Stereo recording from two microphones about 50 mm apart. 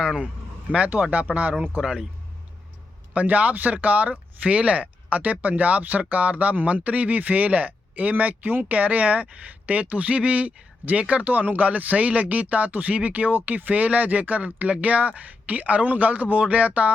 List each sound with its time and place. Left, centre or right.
0.9 s speech: right
1.8 s speech: centre
3.1 s speech: right